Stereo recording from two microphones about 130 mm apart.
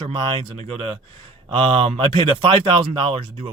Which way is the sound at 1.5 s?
45° right (ahead or behind).